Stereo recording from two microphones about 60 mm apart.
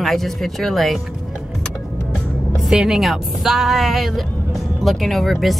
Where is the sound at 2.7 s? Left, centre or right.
Centre.